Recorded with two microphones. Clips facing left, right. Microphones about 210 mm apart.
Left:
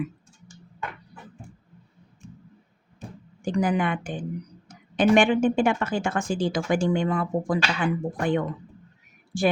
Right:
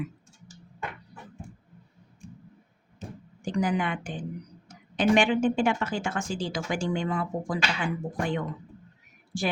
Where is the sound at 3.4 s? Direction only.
55° left (ahead or behind).